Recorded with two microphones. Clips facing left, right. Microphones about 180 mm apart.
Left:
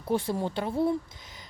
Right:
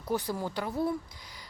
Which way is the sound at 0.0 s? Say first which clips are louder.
Left 4 dB; 25° left (ahead or behind).